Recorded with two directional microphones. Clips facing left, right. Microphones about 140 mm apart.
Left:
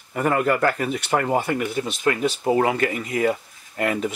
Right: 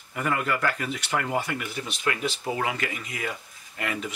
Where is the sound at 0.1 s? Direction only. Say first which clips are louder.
Left 7 dB; 40° left (ahead or behind).